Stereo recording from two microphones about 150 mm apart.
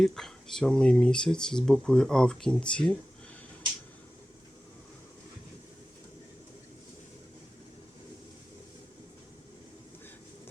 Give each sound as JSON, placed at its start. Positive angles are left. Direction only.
{"t": 0.0, "sound": "speech", "side_deg": 0}